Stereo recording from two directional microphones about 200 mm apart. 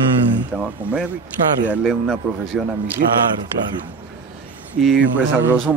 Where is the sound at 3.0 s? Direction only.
45° right (ahead or behind).